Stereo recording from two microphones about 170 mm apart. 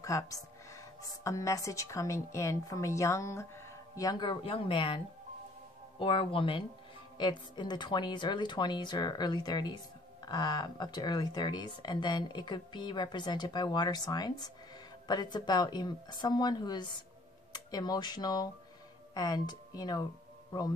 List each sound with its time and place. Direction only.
0.0 s a woman's voice: 20° left (ahead or behind)